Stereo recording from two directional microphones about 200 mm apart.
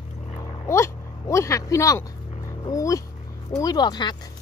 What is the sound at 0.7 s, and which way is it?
Speech, 15° left (ahead or behind).